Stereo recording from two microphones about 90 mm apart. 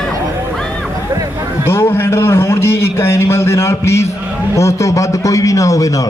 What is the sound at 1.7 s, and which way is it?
A man's voice, 25° left (ahead or behind).